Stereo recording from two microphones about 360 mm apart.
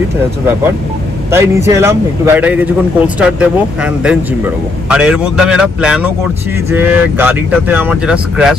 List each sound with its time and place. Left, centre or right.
1.3 s speech: centre